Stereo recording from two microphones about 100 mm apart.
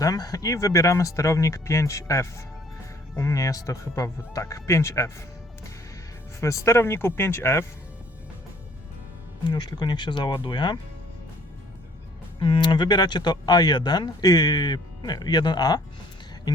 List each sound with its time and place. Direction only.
0.0 s speech: 35° left (ahead or behind)
6.4 s speech: 30° left (ahead or behind)
9.5 s speech: 45° left (ahead or behind)
12.4 s speech: 50° left (ahead or behind)